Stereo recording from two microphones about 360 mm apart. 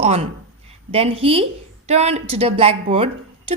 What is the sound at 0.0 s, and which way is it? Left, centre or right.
A woman's voice, centre.